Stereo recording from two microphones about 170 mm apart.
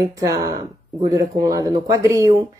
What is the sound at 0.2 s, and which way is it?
Speech, 20° right (ahead or behind).